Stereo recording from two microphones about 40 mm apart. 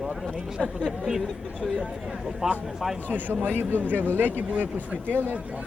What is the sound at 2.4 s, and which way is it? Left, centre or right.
Speech, centre.